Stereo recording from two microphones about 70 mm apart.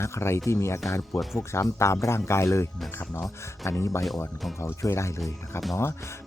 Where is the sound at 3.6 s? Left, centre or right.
Left.